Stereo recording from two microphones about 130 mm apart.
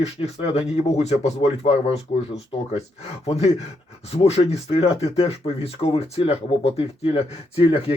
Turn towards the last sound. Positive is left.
turn(degrees=50)  # may be behind; listen again after turning